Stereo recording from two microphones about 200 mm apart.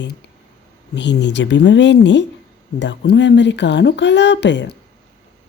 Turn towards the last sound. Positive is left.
turn(degrees=60)  # may be behind; listen again after turning